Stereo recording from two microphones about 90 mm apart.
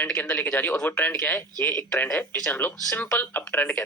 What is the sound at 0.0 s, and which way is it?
Speech, 15° left (ahead or behind).